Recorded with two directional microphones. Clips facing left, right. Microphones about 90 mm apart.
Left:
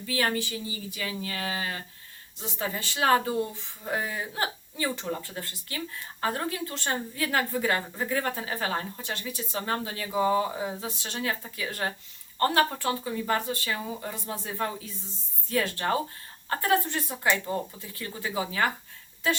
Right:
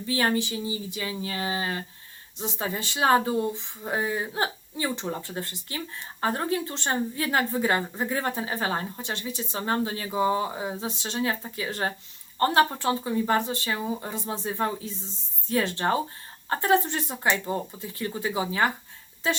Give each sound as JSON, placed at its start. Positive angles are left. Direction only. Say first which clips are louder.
{"t": 0.0, "sound": "speech", "louder": "right 3 dB", "side_deg": -25}